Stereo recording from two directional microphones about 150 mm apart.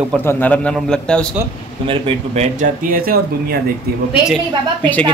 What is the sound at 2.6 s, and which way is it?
Speech, 70° right (ahead or behind).